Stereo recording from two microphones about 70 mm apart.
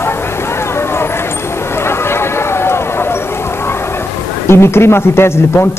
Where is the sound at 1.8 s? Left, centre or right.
Left.